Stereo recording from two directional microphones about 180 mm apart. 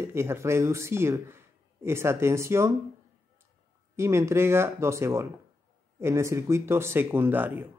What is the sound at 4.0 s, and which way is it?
Speech, 15° right (ahead or behind).